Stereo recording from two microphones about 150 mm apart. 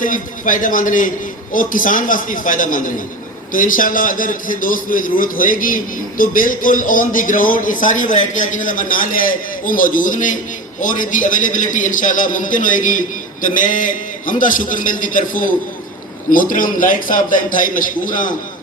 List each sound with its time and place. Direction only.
0.0 s a man's voice: 60° left (ahead or behind)